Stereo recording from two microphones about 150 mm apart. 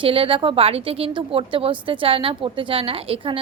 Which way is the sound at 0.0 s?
35° right (ahead or behind).